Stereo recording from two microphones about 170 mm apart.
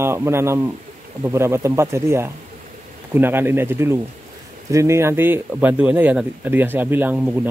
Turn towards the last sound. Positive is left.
turn(degrees=-10)  # may be behind; listen again after turning